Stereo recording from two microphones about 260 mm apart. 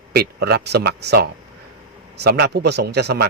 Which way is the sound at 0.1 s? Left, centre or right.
Right.